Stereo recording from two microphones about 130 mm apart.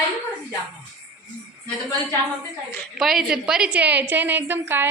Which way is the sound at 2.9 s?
Centre (ahead or behind).